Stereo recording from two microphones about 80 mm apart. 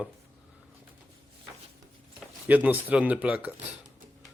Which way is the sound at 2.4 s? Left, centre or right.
Centre.